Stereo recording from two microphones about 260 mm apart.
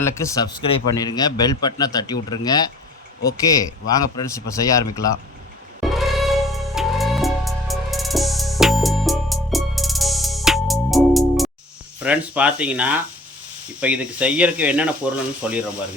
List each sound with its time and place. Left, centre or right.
0.0 s a man's voice: centre
3.8 s a man's voice: centre
5.8 s music: centre
12.0 s speech: centre